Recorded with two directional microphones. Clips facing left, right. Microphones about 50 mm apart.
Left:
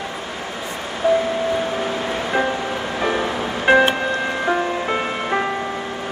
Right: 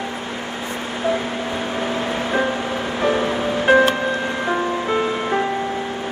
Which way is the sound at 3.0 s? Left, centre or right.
Centre.